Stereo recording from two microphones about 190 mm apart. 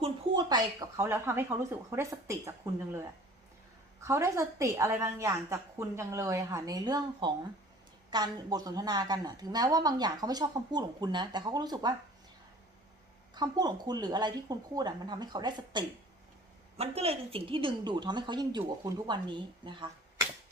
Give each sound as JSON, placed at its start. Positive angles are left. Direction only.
{"t": 0.0, "sound": "a woman's voice", "side_deg": -20}
{"t": 4.0, "sound": "a woman's voice", "side_deg": -15}
{"t": 13.3, "sound": "a woman's voice", "side_deg": -20}